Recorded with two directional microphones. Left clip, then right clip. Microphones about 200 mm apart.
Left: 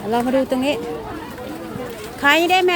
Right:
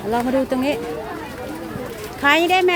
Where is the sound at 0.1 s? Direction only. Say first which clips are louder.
Left 1 dB; 5° left (ahead or behind).